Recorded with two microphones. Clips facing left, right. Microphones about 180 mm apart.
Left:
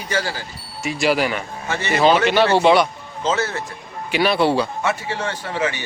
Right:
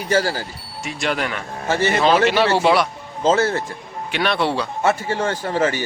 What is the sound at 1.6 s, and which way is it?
Speech, 35° right (ahead or behind).